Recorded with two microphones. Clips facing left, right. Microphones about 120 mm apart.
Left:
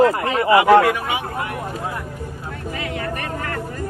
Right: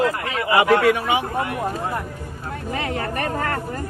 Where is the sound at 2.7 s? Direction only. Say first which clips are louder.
Right 2 dB; 35° right (ahead or behind).